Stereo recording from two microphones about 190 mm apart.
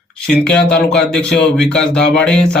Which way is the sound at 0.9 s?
5° left (ahead or behind).